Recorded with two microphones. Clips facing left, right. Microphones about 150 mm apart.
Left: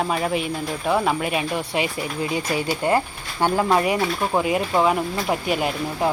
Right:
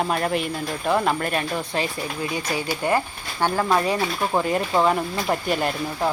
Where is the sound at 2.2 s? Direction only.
25° left (ahead or behind).